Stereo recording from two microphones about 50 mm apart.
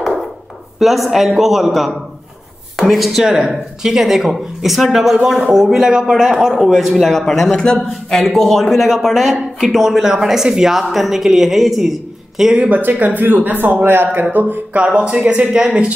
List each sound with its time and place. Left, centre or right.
0.7 s a man's voice: centre
6.7 s a man's voice: centre
7.5 s a man's voice: centre
8.9 s speech: centre
12.5 s speech: right